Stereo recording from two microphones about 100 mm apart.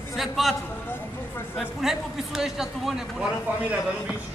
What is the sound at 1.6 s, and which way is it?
Speech, 5° right (ahead or behind).